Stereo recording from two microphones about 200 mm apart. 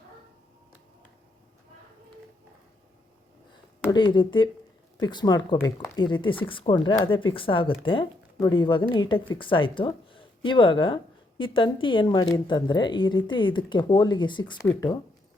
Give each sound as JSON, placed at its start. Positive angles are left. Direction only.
{"t": 3.8, "sound": "speech", "side_deg": 20}